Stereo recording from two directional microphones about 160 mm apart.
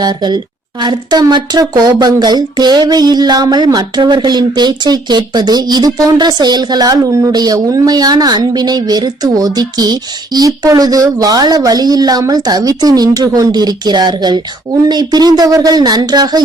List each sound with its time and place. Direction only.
0.0 s speech: 25° right (ahead or behind)